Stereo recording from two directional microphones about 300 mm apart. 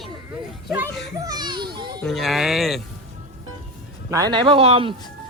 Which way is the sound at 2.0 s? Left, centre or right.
Centre.